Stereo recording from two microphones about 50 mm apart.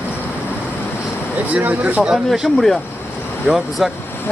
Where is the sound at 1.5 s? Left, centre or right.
Right.